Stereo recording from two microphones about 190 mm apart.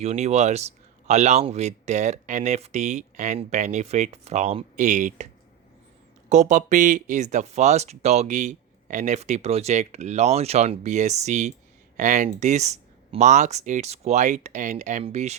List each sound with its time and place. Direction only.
0.0 s speech: 35° right (ahead or behind)